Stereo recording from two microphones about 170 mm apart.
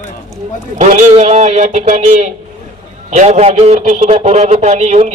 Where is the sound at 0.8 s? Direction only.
45° right (ahead or behind).